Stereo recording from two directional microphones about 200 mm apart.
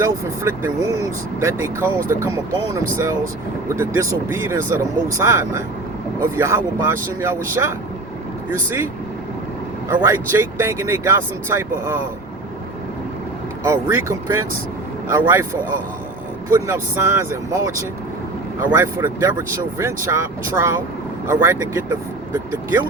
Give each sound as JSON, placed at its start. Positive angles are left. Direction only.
{"t": 0.0, "sound": "speech", "side_deg": -15}
{"t": 9.9, "sound": "speech", "side_deg": -15}
{"t": 13.7, "sound": "speech", "side_deg": -10}
{"t": 16.5, "sound": "speech", "side_deg": -15}